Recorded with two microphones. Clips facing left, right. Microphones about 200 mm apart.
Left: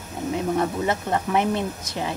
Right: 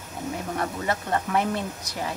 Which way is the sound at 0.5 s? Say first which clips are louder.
Left 2 dB; 20° left (ahead or behind).